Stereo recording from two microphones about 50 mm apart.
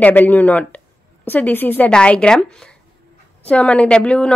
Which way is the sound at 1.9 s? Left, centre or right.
Left.